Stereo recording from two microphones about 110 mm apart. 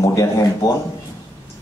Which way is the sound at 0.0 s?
30° left (ahead or behind).